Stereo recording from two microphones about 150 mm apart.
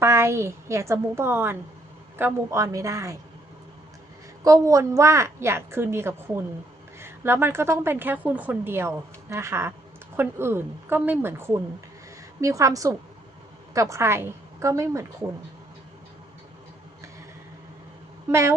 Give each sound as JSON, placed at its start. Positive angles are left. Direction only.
{"t": 0.0, "sound": "a woman's voice", "side_deg": -20}
{"t": 4.4, "sound": "a woman's voice", "side_deg": -20}
{"t": 18.3, "sound": "a woman's voice", "side_deg": -20}